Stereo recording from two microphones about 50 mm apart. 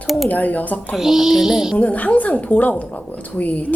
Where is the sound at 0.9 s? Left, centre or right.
Centre.